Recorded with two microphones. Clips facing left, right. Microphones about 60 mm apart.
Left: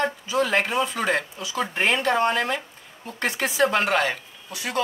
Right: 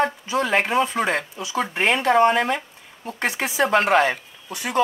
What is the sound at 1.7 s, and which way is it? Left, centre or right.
Speech, centre.